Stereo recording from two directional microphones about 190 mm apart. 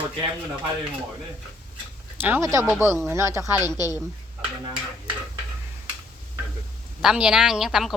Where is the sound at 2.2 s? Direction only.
10° right (ahead or behind).